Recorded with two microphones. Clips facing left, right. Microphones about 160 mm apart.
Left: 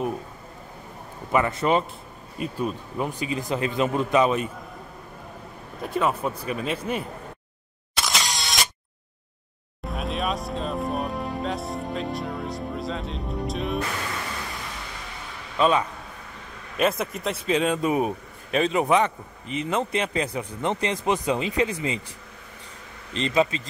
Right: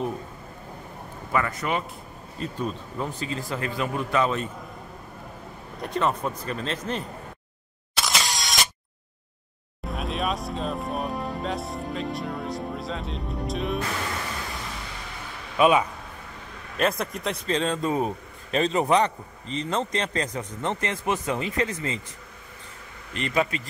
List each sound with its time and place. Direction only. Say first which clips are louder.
1.3 s speech: left 5 dB; 25° left (ahead or behind)
2.3 s a man's voice: left 2 dB; 10° left (ahead or behind)
5.8 s a man's voice: left 1 dB; 5° left (ahead or behind)
7.9 s single-lens reflex camera: even; centre (ahead or behind)
9.8 s speech: even; centre (ahead or behind)
15.5 s speech: right 2 dB; 10° right (ahead or behind)
16.7 s a man's voice: left 2 dB; 5° left (ahead or behind)
23.1 s speech: left 3 dB; 25° left (ahead or behind)